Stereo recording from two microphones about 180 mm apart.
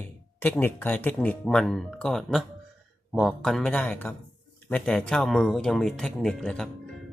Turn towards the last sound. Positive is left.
turn(degrees=5)  # may be behind; listen again after turning